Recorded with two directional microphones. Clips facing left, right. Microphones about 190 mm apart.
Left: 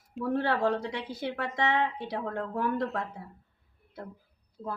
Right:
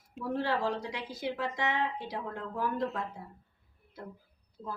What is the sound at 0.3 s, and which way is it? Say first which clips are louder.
A woman's voice: left 4 dB; 60° left (ahead or behind).